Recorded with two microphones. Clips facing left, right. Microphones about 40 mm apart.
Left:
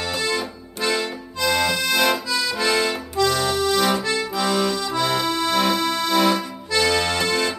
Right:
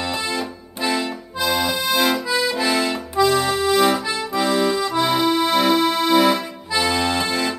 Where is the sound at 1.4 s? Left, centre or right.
Centre.